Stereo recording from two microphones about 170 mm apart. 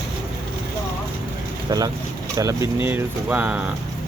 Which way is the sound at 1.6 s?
20° right (ahead or behind).